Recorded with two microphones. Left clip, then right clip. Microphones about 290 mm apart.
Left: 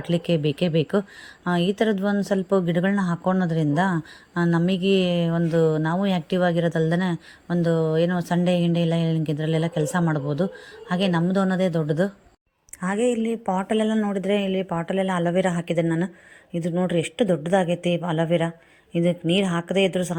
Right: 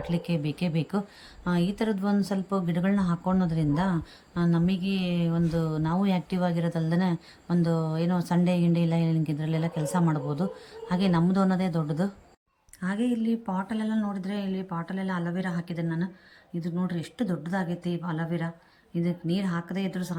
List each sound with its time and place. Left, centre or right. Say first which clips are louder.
0.1 s a woman's voice: left 12 dB; centre
13.0 s speech: left 7 dB; centre
13.4 s a woman's voice: left 9 dB; centre